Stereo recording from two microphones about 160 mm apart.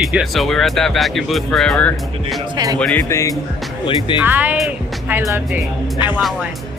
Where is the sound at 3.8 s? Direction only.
30° left (ahead or behind).